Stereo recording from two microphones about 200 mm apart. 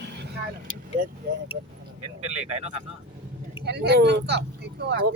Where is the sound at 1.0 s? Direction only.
40° right (ahead or behind).